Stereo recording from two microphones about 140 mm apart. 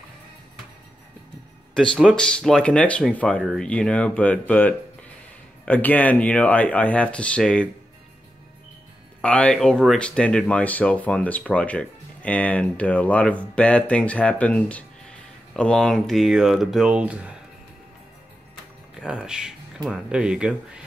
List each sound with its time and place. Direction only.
1.7 s speech: 5° left (ahead or behind)
9.2 s speech: 5° left (ahead or behind); by 17.4 s 10° right (ahead or behind)
18.9 s speech: 5° right (ahead or behind)